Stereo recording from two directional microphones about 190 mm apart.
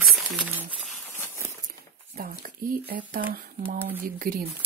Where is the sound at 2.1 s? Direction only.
50° right (ahead or behind).